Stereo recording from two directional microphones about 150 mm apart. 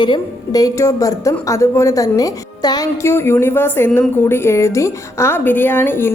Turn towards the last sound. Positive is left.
turn(degrees=15)  # may be behind; listen again after turning